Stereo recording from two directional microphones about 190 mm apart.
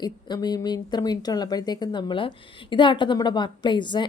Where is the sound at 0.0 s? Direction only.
20° left (ahead or behind).